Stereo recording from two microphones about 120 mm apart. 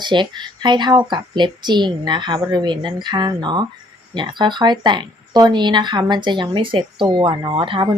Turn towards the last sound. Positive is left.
turn(degrees=-40)  # may be behind; listen again after turning